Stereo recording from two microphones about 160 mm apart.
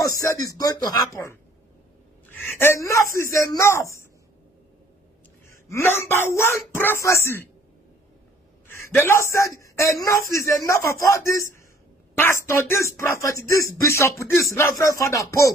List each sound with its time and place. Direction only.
0.0 s speech: 20° left (ahead or behind)
5.5 s speech: 15° left (ahead or behind)
8.6 s a man's voice: 15° left (ahead or behind)